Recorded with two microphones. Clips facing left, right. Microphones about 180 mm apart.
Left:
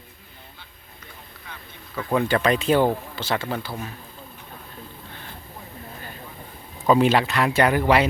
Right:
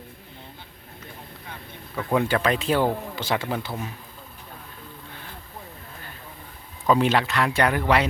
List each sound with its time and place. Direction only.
2.0 s speech: 10° right (ahead or behind)
3.2 s a man's voice: 15° right (ahead or behind)
6.9 s speech: 10° left (ahead or behind)